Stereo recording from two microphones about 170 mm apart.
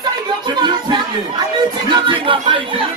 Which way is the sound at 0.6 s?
25° right (ahead or behind).